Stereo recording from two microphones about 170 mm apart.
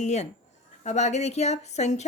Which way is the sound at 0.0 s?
45° left (ahead or behind).